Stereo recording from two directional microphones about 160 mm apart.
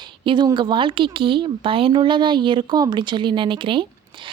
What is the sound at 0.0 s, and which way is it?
A woman's voice, 30° right (ahead or behind).